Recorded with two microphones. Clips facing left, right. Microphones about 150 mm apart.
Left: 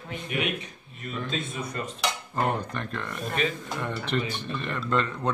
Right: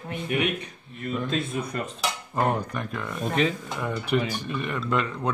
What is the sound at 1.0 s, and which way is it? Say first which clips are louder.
Speech: right 5 dB; 60° right (ahead or behind).